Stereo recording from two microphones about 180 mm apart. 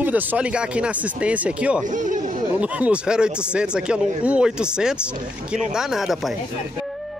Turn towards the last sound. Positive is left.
turn(degrees=0)  # may be behind; listen again after turning